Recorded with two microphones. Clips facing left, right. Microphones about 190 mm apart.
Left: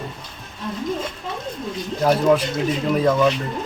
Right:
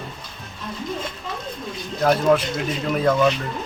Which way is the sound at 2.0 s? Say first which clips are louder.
Left 1 dB; 10° left (ahead or behind).